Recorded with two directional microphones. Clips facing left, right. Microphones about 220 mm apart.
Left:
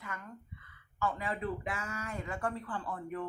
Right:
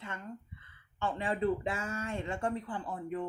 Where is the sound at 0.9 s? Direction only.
30° right (ahead or behind).